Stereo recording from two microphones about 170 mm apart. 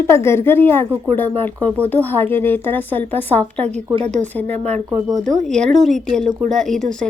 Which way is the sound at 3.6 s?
40° right (ahead or behind).